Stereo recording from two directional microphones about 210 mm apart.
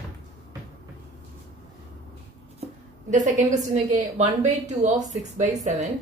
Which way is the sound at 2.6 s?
35° right (ahead or behind).